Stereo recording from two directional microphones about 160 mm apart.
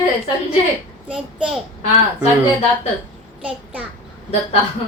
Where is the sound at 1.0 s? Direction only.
5° right (ahead or behind).